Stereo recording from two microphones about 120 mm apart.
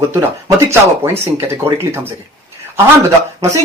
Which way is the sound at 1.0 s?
20° right (ahead or behind).